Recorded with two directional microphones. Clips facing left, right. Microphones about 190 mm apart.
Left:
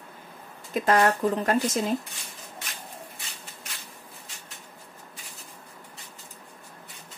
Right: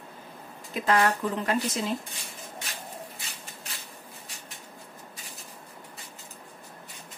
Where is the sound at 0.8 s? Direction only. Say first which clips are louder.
Left 3 dB; 45° left (ahead or behind).